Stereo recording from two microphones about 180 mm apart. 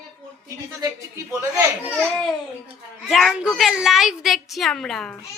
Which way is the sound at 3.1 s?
Centre (ahead or behind).